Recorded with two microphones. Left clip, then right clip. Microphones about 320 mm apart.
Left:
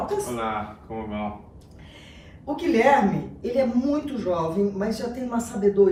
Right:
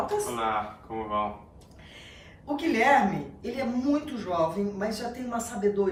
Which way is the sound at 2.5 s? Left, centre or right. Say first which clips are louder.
Left 3 dB; centre.